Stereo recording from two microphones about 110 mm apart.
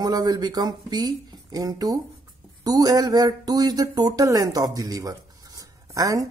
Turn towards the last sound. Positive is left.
turn(degrees=-30)  # may be behind; listen again after turning